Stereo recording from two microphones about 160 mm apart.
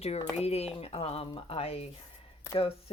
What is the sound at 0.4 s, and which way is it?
Speech, 40° left (ahead or behind).